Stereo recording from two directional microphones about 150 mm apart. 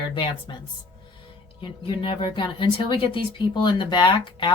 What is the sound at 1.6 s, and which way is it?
Speech, 35° left (ahead or behind).